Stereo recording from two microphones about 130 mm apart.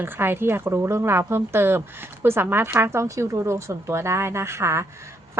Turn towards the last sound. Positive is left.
turn(degrees=-20)  # may be behind; listen again after turning